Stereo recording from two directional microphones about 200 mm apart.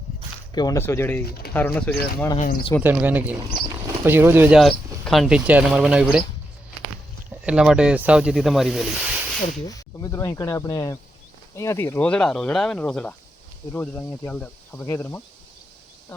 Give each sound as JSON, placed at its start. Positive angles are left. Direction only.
{"t": 0.5, "sound": "speech", "side_deg": 20}
{"t": 1.2, "sound": "speech", "side_deg": 50}
{"t": 1.5, "sound": "speech", "side_deg": 10}
{"t": 2.8, "sound": "speech", "side_deg": -10}
{"t": 7.3, "sound": "speech", "side_deg": -5}
{"t": 9.6, "sound": "speech", "side_deg": 15}